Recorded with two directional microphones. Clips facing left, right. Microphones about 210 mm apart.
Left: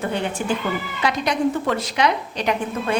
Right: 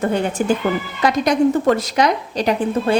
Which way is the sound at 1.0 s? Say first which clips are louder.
Right 6 dB; 45° right (ahead or behind).